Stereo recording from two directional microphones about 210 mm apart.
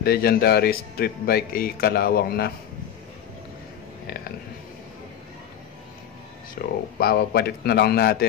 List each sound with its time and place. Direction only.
0.0 s speech: 50° left (ahead or behind)
6.6 s speech: 45° left (ahead or behind)